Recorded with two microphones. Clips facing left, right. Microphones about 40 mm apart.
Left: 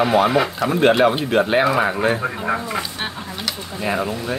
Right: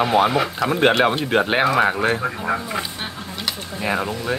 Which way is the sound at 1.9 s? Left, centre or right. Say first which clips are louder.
Left 1 dB; centre.